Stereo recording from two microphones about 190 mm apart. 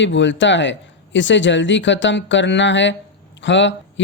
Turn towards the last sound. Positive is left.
turn(degrees=70)  # may be behind; listen again after turning